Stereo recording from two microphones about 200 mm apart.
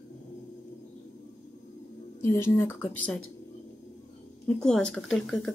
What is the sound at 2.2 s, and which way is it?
Speech, 10° left (ahead or behind).